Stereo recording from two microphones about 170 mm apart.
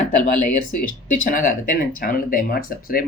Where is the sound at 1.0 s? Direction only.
50° left (ahead or behind).